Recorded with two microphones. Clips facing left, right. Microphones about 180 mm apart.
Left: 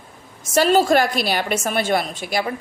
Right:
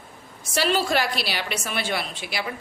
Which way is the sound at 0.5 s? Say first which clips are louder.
Left 7 dB; 45° left (ahead or behind).